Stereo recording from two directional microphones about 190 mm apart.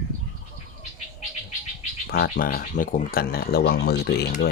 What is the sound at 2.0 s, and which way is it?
Speech, 50° left (ahead or behind).